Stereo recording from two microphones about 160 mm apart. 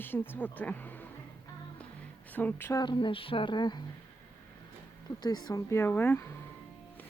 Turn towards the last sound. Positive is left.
turn(degrees=15)  # may be behind; listen again after turning